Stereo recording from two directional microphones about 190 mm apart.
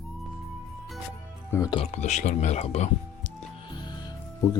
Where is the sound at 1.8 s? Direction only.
35° left (ahead or behind).